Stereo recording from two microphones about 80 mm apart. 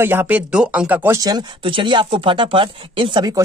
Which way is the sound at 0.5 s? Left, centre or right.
Centre.